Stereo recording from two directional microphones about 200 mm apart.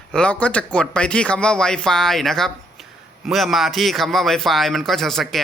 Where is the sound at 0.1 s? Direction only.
5° left (ahead or behind).